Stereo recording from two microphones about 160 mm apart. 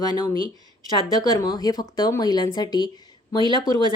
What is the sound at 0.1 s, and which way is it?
Speech, 25° left (ahead or behind).